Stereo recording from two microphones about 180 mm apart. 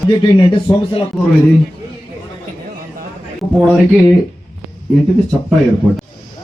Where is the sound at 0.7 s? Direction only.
15° left (ahead or behind).